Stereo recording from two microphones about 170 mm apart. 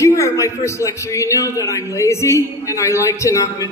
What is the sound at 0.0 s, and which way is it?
A man's voice, 15° left (ahead or behind).